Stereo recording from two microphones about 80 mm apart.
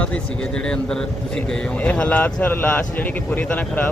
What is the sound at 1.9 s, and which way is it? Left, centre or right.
Speech, centre.